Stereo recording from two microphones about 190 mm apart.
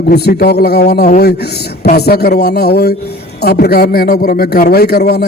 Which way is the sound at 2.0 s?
60° left (ahead or behind).